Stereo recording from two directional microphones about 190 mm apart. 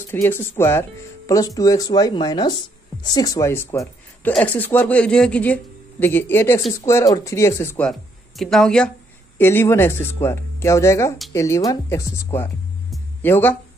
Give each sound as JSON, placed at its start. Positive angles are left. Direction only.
{"t": 0.0, "sound": "speech", "side_deg": 10}